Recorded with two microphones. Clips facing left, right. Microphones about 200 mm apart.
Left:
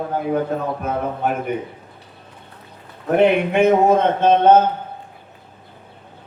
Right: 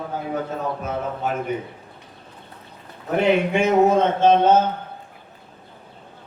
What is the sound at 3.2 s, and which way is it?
A man's voice, 60° left (ahead or behind).